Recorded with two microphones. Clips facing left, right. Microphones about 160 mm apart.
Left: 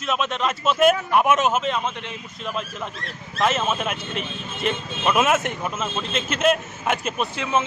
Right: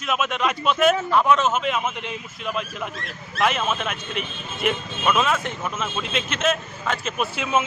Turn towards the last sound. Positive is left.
turn(degrees=-10)  # may be behind; listen again after turning